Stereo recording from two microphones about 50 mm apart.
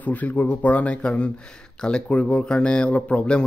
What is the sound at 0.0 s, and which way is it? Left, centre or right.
A man's voice, left.